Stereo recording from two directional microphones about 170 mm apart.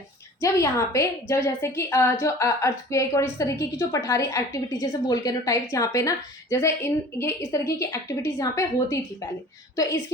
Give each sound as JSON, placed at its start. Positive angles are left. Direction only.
{"t": 0.3, "sound": "a woman's voice", "side_deg": 15}